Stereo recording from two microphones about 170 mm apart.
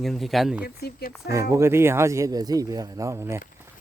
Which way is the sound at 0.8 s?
70° left (ahead or behind).